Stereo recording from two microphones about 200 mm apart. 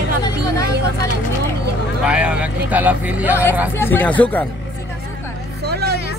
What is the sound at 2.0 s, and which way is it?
Speech, 5° right (ahead or behind).